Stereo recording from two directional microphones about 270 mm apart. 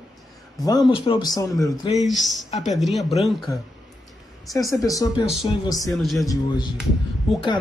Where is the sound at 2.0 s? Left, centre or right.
Centre.